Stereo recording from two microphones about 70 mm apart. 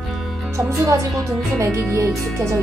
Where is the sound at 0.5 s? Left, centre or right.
Right.